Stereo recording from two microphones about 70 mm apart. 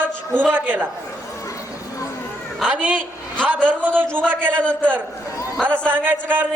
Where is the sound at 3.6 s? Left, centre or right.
Centre.